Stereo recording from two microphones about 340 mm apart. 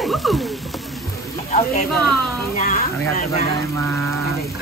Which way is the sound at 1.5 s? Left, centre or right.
Left.